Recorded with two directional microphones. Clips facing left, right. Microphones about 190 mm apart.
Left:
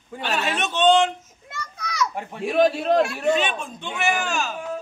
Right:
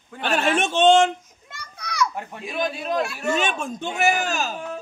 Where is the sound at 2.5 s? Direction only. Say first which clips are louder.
Left 8 dB; 70° left (ahead or behind).